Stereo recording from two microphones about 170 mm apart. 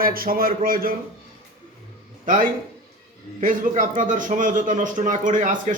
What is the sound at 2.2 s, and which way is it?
A man's voice, 50° right (ahead or behind).